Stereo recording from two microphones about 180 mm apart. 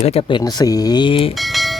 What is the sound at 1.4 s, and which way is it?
Music, centre (ahead or behind).